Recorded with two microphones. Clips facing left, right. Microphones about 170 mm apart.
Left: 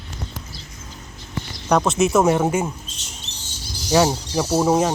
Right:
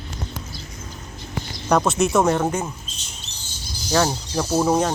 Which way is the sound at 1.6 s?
Centre (ahead or behind).